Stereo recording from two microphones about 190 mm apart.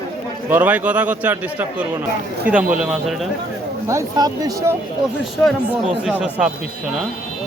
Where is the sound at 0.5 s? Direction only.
10° right (ahead or behind).